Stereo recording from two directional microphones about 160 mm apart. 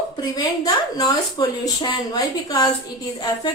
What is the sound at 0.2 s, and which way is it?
Speech, 25° left (ahead or behind).